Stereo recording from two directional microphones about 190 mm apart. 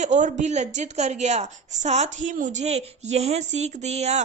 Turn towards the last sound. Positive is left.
turn(degrees=-35)  # may be behind; listen again after turning